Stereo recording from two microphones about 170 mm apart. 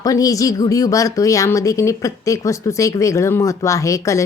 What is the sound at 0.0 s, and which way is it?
A woman's voice, 20° left (ahead or behind).